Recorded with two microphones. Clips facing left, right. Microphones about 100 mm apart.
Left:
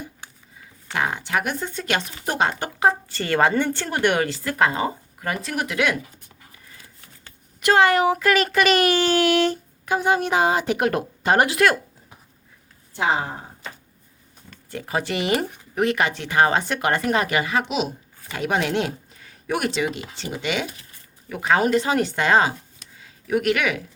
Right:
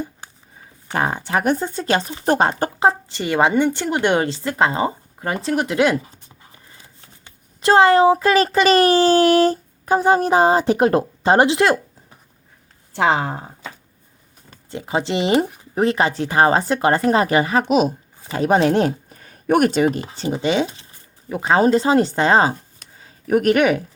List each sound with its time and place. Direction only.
0.9 s speech: 35° right (ahead or behind)
3.1 s speech: 15° right (ahead or behind)
12.9 s speech: 90° right
14.7 s speech: 20° right (ahead or behind); by 17.9 s 45° right (ahead or behind)
18.2 s speech: 35° right (ahead or behind)